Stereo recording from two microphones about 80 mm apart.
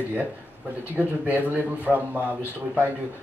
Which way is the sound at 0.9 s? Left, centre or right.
Centre.